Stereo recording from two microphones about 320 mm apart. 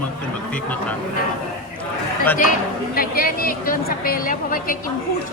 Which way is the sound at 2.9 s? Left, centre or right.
Left.